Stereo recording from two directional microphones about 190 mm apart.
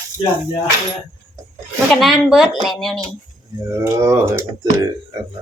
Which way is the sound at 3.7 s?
15° right (ahead or behind).